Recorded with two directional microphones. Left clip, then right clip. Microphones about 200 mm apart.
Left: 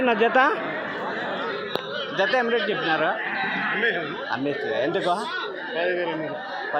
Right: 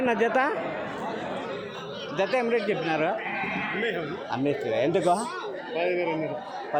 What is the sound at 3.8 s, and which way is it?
Speech, 30° right (ahead or behind).